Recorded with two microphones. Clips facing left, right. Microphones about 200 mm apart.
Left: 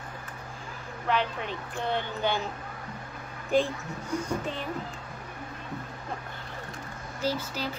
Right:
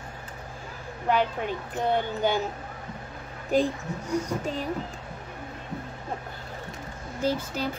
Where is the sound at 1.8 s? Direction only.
45° right (ahead or behind).